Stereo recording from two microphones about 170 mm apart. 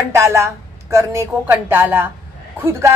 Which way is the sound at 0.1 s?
15° right (ahead or behind).